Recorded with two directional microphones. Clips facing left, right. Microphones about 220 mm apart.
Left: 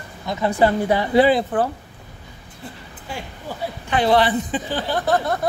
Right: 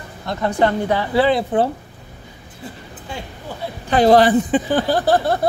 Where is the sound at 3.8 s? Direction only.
40° right (ahead or behind).